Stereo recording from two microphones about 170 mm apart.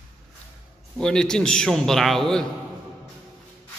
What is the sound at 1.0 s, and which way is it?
A man's voice, 5° left (ahead or behind).